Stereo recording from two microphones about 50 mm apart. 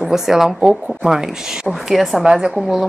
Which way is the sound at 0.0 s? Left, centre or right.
Centre.